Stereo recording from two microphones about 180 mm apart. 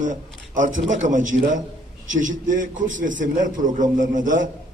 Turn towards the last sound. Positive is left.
turn(degrees=-45)  # may be behind; listen again after turning